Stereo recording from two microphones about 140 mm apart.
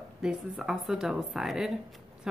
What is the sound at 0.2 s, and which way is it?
A woman's voice, 5° right (ahead or behind).